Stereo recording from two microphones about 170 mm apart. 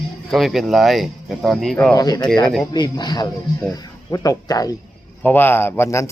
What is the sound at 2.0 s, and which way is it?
Speech, 20° left (ahead or behind).